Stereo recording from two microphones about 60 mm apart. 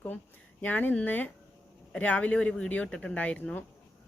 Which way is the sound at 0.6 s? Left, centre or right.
Left.